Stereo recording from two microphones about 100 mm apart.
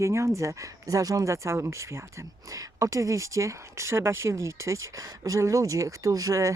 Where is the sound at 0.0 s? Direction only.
30° right (ahead or behind).